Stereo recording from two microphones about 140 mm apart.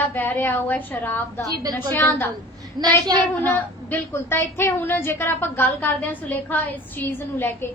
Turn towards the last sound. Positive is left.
turn(degrees=15)  # may be behind; listen again after turning